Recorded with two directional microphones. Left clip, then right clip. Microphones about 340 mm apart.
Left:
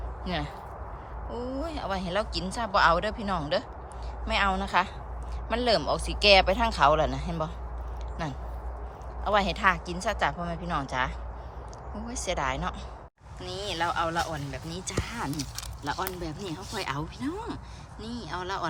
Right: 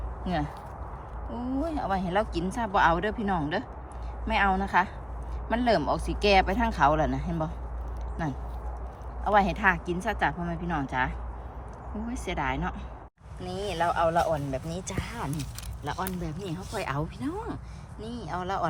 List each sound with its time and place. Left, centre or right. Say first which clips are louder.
0.3 s speech: right 2 dB; centre